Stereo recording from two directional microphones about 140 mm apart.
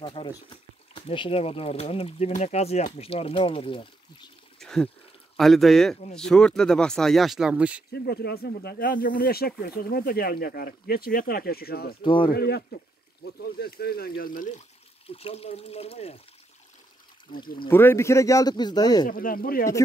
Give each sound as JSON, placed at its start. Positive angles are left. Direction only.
{"t": 0.0, "sound": "speech", "side_deg": 35}
{"t": 4.6, "sound": "a sound", "side_deg": 5}
{"t": 5.4, "sound": "speech", "side_deg": 0}
{"t": 8.4, "sound": "speech", "side_deg": 90}
{"t": 12.0, "sound": "speech", "side_deg": 35}
{"t": 13.7, "sound": "speech", "side_deg": 90}
{"t": 15.0, "sound": "speech", "side_deg": 45}
{"t": 17.6, "sound": "speech", "side_deg": 15}
{"t": 19.0, "sound": "speech", "side_deg": 90}